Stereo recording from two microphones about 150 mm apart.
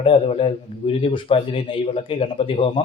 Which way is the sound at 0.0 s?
40° left (ahead or behind).